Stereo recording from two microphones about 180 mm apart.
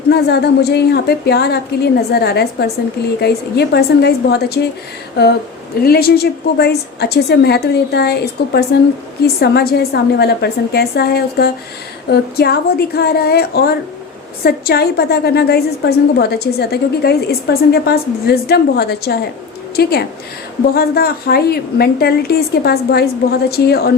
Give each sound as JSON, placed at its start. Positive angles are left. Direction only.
{"t": 0.1, "sound": "a woman's voice", "side_deg": 65}
{"t": 5.8, "sound": "a woman's voice", "side_deg": 60}